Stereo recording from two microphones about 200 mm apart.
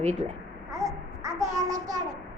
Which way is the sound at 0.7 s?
15° right (ahead or behind).